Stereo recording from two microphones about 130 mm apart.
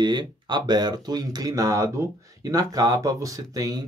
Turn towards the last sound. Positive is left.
turn(degrees=-30)  # may be behind; listen again after turning